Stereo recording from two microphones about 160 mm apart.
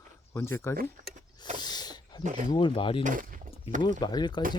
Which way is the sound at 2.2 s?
50° right (ahead or behind).